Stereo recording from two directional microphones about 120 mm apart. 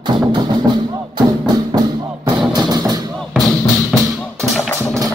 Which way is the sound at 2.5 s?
35° right (ahead or behind).